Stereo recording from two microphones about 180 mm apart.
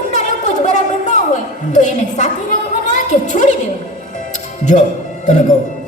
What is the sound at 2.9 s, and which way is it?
Speech, 45° left (ahead or behind).